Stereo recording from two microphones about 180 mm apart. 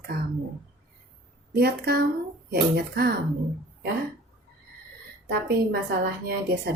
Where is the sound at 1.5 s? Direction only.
60° right (ahead or behind).